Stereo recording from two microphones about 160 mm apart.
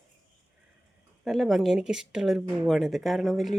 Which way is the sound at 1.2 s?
Centre (ahead or behind).